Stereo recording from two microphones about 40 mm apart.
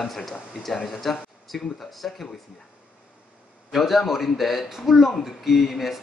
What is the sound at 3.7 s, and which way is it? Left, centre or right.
Speech, centre.